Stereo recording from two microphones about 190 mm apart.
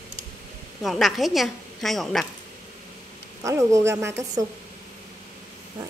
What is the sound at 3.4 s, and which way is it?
A woman's voice, 15° right (ahead or behind).